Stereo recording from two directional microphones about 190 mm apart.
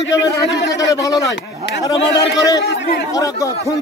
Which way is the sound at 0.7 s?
15° left (ahead or behind).